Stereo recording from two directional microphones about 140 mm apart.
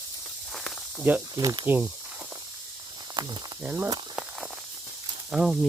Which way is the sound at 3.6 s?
10° right (ahead or behind).